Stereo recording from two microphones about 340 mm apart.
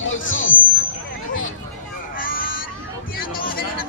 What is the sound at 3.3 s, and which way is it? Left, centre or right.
Speech, left.